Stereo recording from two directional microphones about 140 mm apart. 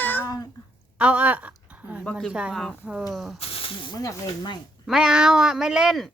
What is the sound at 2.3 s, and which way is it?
Speech, 5° right (ahead or behind).